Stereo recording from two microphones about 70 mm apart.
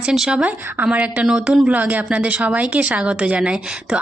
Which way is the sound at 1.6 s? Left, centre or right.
Right.